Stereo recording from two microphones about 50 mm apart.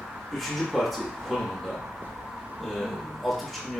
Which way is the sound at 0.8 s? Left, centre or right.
Centre.